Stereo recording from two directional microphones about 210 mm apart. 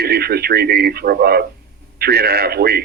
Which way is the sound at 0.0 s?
50° right (ahead or behind).